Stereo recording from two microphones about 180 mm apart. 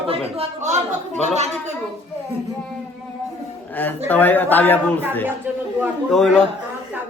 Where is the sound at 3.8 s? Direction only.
10° left (ahead or behind).